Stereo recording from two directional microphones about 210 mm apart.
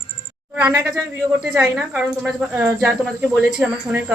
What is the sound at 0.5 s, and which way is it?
Speech, 10° right (ahead or behind).